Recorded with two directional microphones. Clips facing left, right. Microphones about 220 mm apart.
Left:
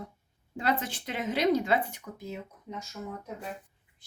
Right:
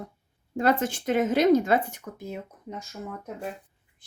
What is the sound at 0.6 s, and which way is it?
Speech, 45° right (ahead or behind).